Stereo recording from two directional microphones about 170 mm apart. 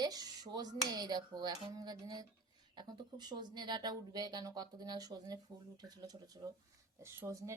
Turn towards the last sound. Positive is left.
turn(degrees=-20)  # may be behind; listen again after turning